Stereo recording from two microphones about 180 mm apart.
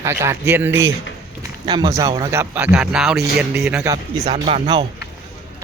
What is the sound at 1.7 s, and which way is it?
Speech, 25° right (ahead or behind).